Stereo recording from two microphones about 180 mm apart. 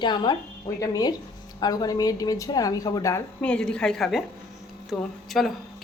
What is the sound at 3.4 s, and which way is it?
Speech, 5° left (ahead or behind).